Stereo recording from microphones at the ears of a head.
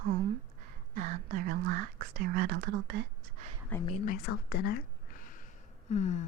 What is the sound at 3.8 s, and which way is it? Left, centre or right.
Speech, left.